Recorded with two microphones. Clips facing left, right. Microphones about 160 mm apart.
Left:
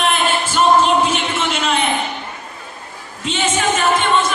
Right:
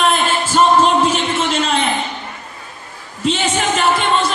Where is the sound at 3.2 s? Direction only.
35° right (ahead or behind).